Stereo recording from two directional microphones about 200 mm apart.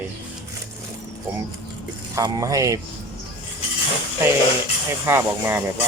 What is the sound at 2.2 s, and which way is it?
Speech, 15° right (ahead or behind).